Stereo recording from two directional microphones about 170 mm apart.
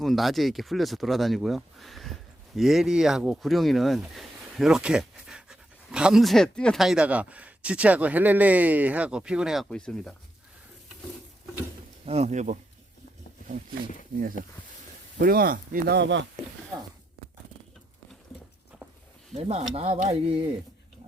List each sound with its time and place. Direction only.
0.0 s speech: centre (ahead or behind)
12.0 s speech: 40° right (ahead or behind)
15.2 s speech: 60° right (ahead or behind)
16.0 s speech: 90° right
19.4 s speech: 40° right (ahead or behind)